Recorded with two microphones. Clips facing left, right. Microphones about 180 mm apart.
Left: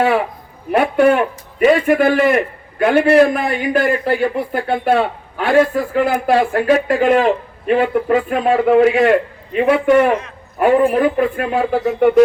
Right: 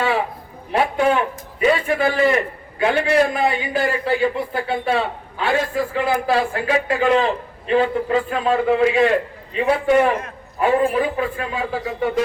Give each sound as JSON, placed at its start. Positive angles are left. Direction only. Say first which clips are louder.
{"t": 0.7, "sound": "a man's voice", "louder": "left 5 dB", "side_deg": 60}